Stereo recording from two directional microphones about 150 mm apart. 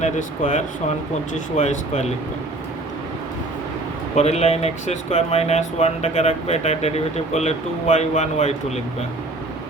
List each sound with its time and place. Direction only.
0.0 s speech: 55° left (ahead or behind)
4.1 s speech: 45° left (ahead or behind)